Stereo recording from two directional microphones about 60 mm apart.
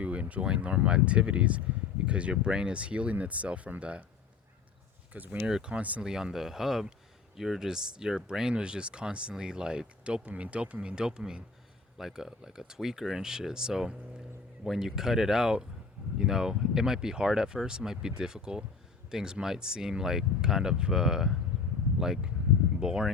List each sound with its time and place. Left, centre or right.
0.0 s speech: right
5.1 s speech: right
5.4 s speech: centre